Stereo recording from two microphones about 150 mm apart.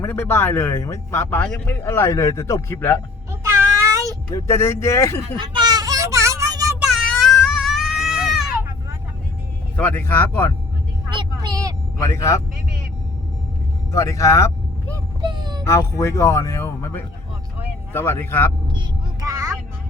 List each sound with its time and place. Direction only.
0.0 s speech: 15° left (ahead or behind)
3.4 s child singing: 20° right (ahead or behind)
4.3 s speech: 20° left (ahead or behind)
5.4 s a sound: 30° right (ahead or behind)
6.7 s goat: centre (ahead or behind)
9.7 s speech: 10° left (ahead or behind)
11.1 s vehicle: 30° right (ahead or behind)
12.1 s speech: 20° left (ahead or behind)
13.9 s speech: 20° left (ahead or behind)
15.2 s a sound: 30° right (ahead or behind)
15.6 s speech: 20° left (ahead or behind)